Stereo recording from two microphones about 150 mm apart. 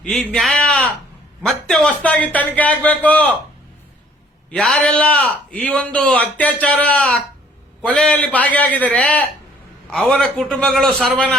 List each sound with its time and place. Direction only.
0.0 s a man's voice: 5° left (ahead or behind)
4.5 s a man's voice: 5° left (ahead or behind)